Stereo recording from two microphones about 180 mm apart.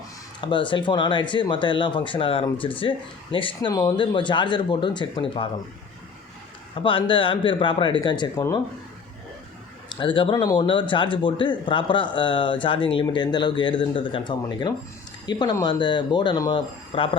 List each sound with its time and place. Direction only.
0.4 s a man's voice: 25° left (ahead or behind)
6.7 s a man's voice: 30° left (ahead or behind)
10.0 s a man's voice: 25° left (ahead or behind)